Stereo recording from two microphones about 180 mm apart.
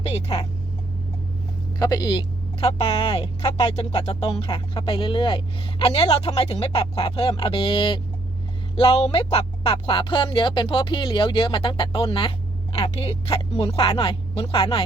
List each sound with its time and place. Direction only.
0.0 s speech: 35° left (ahead or behind)
1.8 s speech: 20° left (ahead or behind)